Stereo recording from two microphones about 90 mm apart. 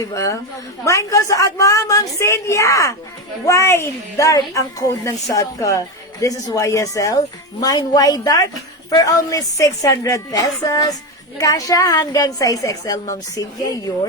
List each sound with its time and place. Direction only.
0.0 s a woman's voice: 40° left (ahead or behind)